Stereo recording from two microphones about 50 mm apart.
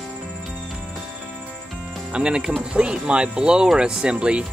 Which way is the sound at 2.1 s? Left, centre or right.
Centre.